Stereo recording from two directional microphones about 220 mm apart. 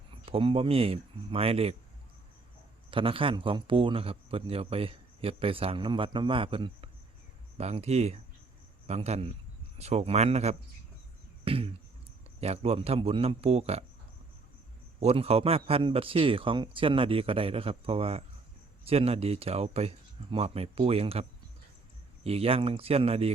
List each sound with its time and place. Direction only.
0.3 s a man's voice: 25° right (ahead or behind)
2.9 s a man's voice: 25° right (ahead or behind)
11.4 s a sound: 25° right (ahead or behind)
12.4 s a man's voice: 30° right (ahead or behind)
14.9 s a man's voice: 25° right (ahead or behind)